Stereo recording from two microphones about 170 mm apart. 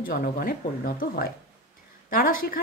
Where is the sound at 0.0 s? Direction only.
55° left (ahead or behind).